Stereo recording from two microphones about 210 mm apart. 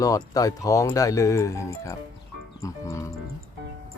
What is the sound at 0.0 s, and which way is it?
Speech, 15° left (ahead or behind).